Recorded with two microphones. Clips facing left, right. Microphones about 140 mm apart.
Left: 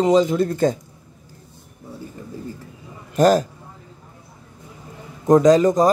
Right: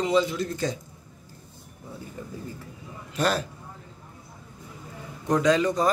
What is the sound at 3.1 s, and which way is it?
Speech, 40° left (ahead or behind).